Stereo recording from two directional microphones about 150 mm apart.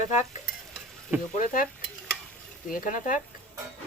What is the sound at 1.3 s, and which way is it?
Speech, 65° left (ahead or behind).